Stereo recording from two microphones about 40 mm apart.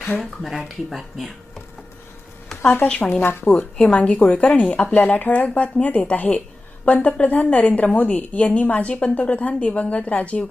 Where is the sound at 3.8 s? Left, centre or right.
Left.